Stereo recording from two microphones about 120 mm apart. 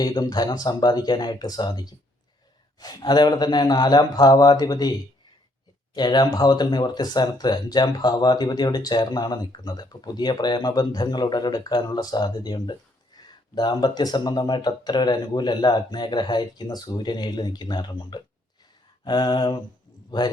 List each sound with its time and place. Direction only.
0.0 s a man's voice: 35° left (ahead or behind)